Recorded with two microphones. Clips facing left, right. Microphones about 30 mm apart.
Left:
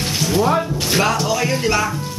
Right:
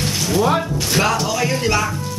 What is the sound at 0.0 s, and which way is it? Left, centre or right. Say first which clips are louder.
Music: even; centre.